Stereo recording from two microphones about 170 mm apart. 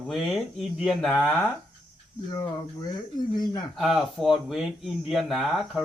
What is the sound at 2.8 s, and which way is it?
Speech, 25° left (ahead or behind).